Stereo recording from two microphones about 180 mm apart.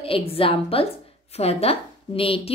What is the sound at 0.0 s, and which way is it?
A woman's voice, 30° left (ahead or behind).